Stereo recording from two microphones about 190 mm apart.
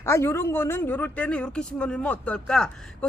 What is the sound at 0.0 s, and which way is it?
Speech, 15° left (ahead or behind).